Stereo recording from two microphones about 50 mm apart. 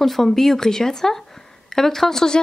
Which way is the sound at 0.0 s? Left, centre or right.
Centre.